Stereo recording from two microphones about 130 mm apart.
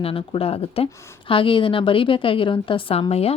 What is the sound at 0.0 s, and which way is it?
A woman's voice, 45° left (ahead or behind).